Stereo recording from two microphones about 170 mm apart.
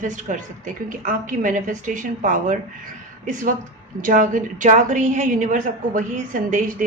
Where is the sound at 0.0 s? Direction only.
50° right (ahead or behind).